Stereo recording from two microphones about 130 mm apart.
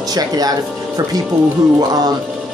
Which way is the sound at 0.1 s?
30° right (ahead or behind).